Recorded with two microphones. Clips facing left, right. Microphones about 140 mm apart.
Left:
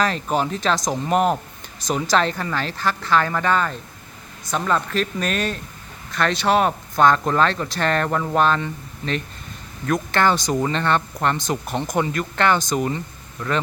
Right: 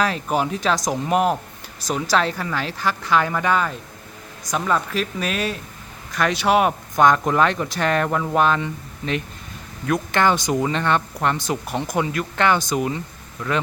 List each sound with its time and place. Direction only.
0.0 s speech: 10° right (ahead or behind)